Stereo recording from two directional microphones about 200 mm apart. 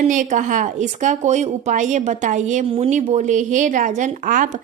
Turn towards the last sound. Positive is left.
turn(degrees=-40)  # may be behind; listen again after turning